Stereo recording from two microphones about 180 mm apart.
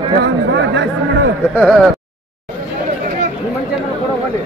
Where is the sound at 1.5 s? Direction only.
5° left (ahead or behind).